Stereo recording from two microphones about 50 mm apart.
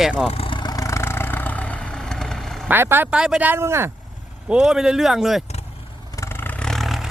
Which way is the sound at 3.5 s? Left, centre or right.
Right.